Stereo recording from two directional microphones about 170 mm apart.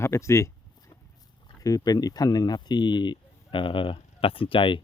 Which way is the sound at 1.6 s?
20° left (ahead or behind).